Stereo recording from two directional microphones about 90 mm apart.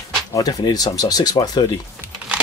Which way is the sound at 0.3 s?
50° left (ahead or behind).